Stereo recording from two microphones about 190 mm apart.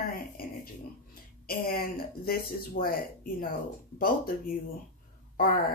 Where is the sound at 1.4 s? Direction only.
50° left (ahead or behind).